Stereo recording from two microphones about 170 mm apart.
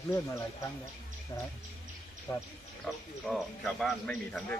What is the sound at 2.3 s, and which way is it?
Speech, 20° left (ahead or behind).